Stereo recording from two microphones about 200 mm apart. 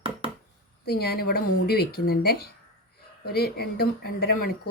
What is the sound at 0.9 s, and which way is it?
Speech, 50° left (ahead or behind).